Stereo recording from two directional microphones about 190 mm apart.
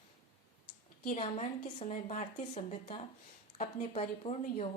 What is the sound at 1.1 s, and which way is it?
A woman's voice, 30° left (ahead or behind).